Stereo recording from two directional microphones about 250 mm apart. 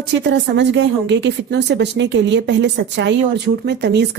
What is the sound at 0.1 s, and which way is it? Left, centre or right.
Speech, right.